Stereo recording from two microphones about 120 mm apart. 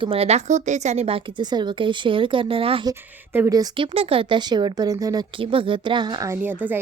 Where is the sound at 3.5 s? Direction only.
30° right (ahead or behind).